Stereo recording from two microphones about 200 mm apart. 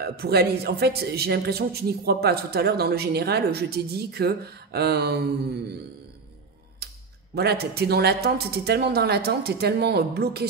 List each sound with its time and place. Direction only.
0.0 s a man's voice: 50° right (ahead or behind)
6.8 s a sound: 50° right (ahead or behind)
7.3 s a man's voice: 55° right (ahead or behind)